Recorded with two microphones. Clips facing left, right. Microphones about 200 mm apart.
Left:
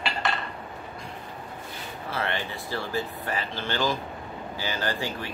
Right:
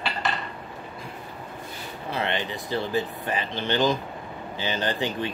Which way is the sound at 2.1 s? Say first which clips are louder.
Right 3 dB; 20° right (ahead or behind).